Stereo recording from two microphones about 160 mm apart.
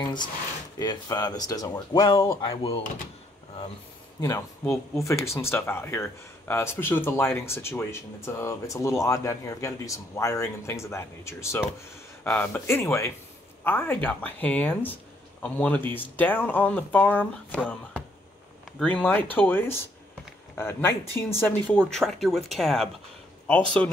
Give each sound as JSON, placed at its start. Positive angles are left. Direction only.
{"t": 0.7, "sound": "speech", "side_deg": 25}
{"t": 2.4, "sound": "speech", "side_deg": 35}
{"t": 4.2, "sound": "speech", "side_deg": 20}
{"t": 18.8, "sound": "speech", "side_deg": 10}